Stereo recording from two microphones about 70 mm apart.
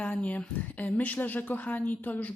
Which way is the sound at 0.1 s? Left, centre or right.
Left.